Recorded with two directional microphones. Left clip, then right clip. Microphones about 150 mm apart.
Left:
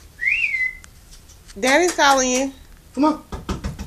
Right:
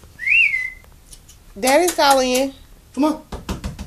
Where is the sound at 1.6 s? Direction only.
10° right (ahead or behind).